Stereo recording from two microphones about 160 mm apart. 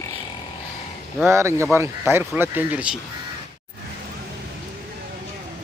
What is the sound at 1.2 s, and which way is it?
Speech, 15° right (ahead or behind).